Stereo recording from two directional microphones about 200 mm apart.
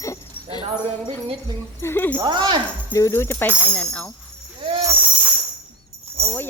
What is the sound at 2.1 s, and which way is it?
Music, 20° right (ahead or behind).